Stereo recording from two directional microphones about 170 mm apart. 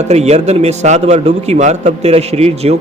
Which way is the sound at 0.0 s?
40° right (ahead or behind).